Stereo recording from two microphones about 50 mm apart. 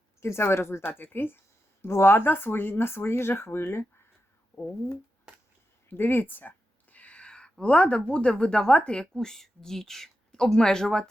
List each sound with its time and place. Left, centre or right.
0.2 s speech: left
1.8 s speech: left
5.9 s a sound: left; by 7.5 s centre
7.6 s speech: left
9.1 s speech: centre